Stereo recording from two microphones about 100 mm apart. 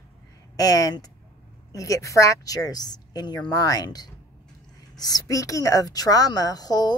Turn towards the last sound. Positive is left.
turn(degrees=45)  # may be behind; listen again after turning